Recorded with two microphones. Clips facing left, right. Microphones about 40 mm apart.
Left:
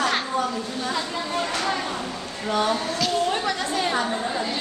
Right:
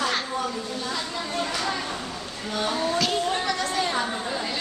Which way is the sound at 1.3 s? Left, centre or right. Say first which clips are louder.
Left 2 dB; centre.